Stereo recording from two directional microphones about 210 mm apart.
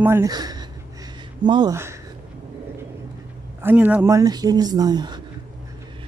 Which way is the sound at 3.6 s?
10° right (ahead or behind).